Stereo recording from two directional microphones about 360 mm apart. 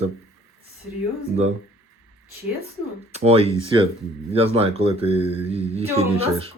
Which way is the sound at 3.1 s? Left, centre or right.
Centre.